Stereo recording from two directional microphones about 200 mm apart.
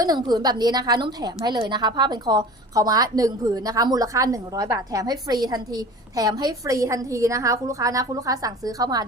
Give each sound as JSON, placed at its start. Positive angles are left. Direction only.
{"t": 0.0, "sound": "a woman's voice", "side_deg": -20}